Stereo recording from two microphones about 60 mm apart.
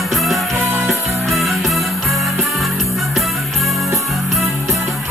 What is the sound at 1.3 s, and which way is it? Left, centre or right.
Music, centre.